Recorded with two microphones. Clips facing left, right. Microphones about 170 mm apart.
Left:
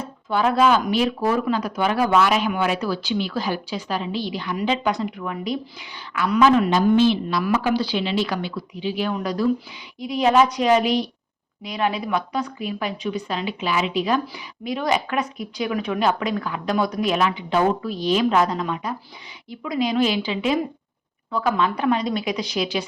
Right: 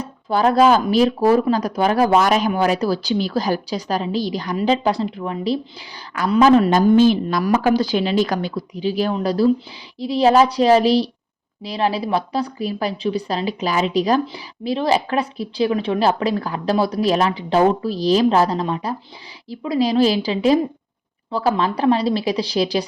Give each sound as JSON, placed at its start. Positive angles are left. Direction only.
{"t": 0.0, "sound": "a woman's voice", "side_deg": -35}
{"t": 6.7, "sound": "a woman's voice", "side_deg": -45}